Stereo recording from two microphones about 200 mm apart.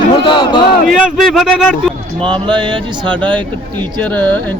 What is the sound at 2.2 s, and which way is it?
Speech, 25° right (ahead or behind).